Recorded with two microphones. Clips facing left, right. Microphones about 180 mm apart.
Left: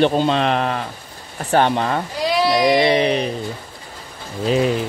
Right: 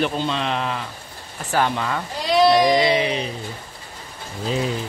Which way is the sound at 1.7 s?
40° left (ahead or behind).